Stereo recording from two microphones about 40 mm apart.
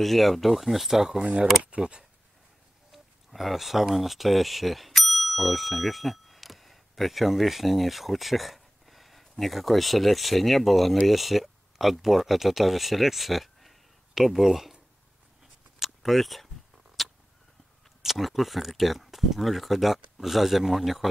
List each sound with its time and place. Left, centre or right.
0.0 s speech: centre
1.0 s speech: centre
1.7 s speech: right
2.9 s speech: centre
15.8 s a sound: centre
18.0 s speech: centre